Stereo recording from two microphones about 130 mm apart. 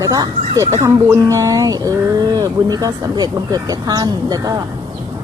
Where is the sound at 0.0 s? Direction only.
30° right (ahead or behind).